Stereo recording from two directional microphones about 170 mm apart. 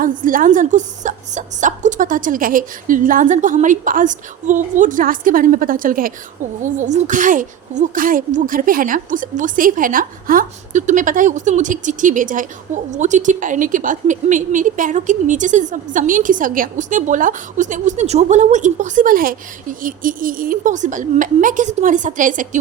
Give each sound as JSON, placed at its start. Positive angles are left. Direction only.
{"t": 0.0, "sound": "a woman's voice", "side_deg": -50}